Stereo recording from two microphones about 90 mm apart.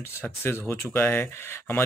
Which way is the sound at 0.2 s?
25° left (ahead or behind).